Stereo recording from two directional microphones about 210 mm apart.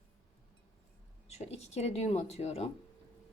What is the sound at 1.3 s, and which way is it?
A woman's voice, 30° left (ahead or behind).